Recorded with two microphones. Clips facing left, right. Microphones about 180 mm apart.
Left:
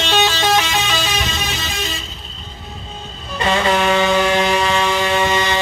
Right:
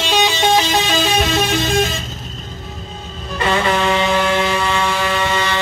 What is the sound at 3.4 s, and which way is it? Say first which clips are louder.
Vehicle: even; 20° left (ahead or behind).